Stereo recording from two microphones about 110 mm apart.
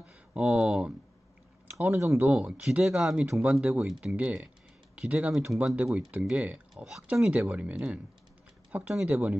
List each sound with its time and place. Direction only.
0.0 s speech: 10° right (ahead or behind)
1.8 s speech: 25° right (ahead or behind)
2.2 s speech: 15° right (ahead or behind)